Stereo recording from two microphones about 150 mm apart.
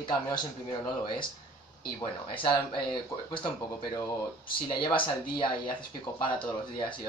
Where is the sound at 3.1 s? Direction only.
20° left (ahead or behind).